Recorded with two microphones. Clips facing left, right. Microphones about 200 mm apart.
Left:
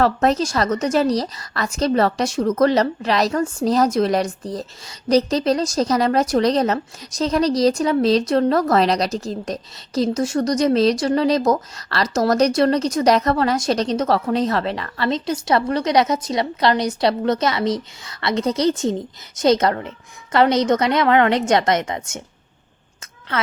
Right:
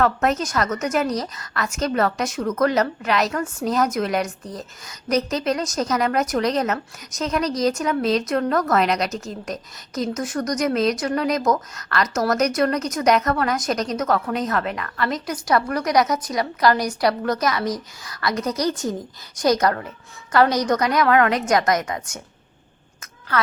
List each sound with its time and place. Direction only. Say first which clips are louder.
0.0 s a woman's voice: left 3 dB; 35° left (ahead or behind)
23.3 s a woman's voice: right 1 dB; 25° left (ahead or behind)